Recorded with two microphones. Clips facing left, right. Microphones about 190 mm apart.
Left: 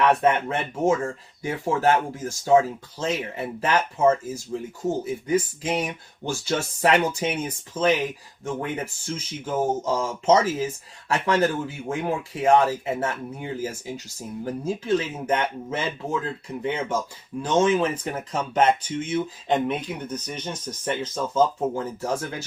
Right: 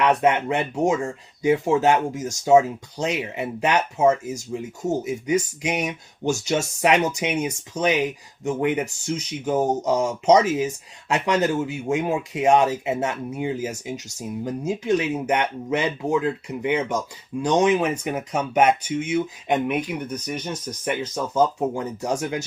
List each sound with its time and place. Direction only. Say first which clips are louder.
0.0 s speech: right 1 dB; 15° right (ahead or behind)